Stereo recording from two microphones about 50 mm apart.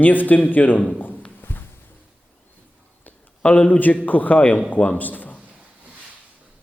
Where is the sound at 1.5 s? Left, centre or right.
Left.